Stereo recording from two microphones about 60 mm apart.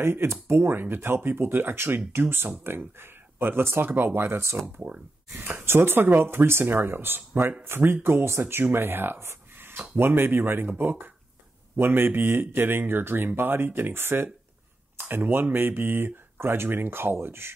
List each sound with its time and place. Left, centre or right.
0.0 s speech: right